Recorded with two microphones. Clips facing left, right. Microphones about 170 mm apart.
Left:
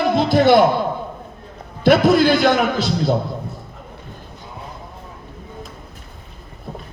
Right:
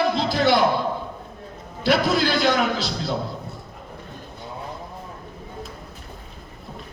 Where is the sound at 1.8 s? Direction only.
55° left (ahead or behind).